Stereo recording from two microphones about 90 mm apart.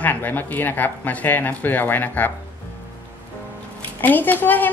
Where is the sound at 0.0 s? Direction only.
25° left (ahead or behind).